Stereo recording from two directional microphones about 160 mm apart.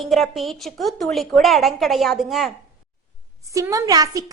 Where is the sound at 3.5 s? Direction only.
20° right (ahead or behind).